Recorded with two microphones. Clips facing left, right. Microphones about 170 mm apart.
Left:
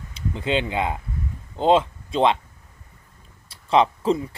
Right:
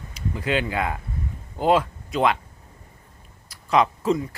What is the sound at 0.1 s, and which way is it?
Speech, 25° left (ahead or behind).